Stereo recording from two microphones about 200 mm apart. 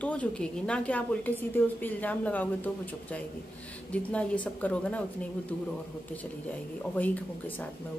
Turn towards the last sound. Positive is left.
turn(degrees=10)  # may be behind; listen again after turning